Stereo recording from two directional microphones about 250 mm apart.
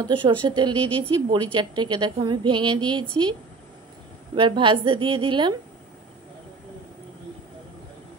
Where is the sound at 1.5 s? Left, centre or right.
Centre.